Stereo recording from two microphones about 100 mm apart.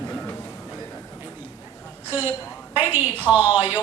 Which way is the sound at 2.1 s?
20° right (ahead or behind).